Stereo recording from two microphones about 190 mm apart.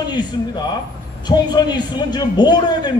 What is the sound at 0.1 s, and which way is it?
A man's voice, 20° left (ahead or behind).